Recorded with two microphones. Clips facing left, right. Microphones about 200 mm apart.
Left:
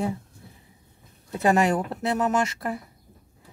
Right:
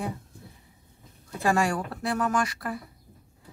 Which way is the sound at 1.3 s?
20° left (ahead or behind).